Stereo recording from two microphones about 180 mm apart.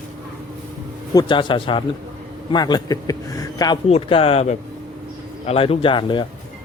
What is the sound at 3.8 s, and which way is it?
Speech, 35° left (ahead or behind).